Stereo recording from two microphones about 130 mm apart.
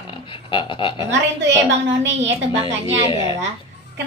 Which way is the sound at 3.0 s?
40° left (ahead or behind).